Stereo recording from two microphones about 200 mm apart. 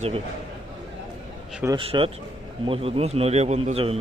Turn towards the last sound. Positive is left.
turn(degrees=-30)  # may be behind; listen again after turning